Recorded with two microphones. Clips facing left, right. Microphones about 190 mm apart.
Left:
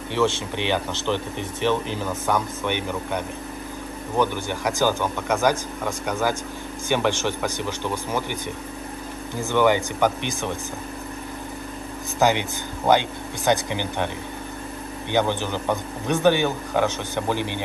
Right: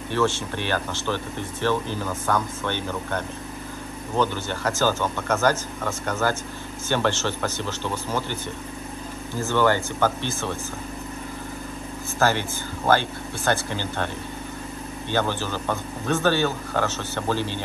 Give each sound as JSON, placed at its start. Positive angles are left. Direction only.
{"t": 0.1, "sound": "speech", "side_deg": 20}
{"t": 9.4, "sound": "speech", "side_deg": 15}
{"t": 12.2, "sound": "speech", "side_deg": 15}